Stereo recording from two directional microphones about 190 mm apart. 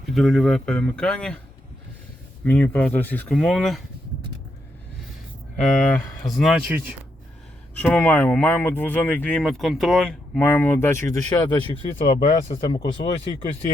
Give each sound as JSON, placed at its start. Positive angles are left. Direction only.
{"t": 0.0, "sound": "speech", "side_deg": 0}
{"t": 2.4, "sound": "speech", "side_deg": 10}
{"t": 5.5, "sound": "speech", "side_deg": 0}
{"t": 7.8, "sound": "speech", "side_deg": 10}